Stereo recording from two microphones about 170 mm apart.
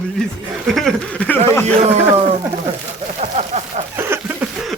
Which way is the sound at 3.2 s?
45° right (ahead or behind).